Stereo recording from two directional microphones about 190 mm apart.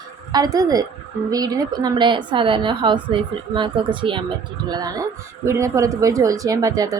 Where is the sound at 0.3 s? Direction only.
20° right (ahead or behind).